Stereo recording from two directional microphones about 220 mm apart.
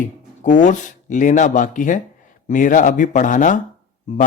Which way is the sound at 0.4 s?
35° left (ahead or behind).